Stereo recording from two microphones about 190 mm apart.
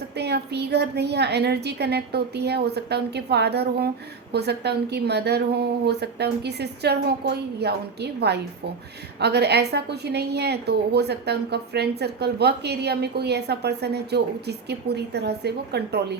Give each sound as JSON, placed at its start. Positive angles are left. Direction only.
{"t": 0.2, "sound": "a woman's voice", "side_deg": -60}